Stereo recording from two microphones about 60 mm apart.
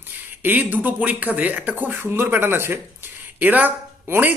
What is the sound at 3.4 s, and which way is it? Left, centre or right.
Speech, right.